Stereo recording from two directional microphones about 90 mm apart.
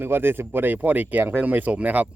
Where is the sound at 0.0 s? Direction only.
25° right (ahead or behind).